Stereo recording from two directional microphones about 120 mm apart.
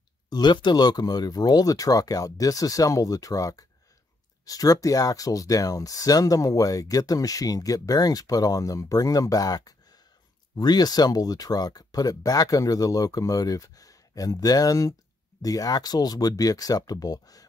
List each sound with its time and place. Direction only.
0.3 s speech: 40° left (ahead or behind)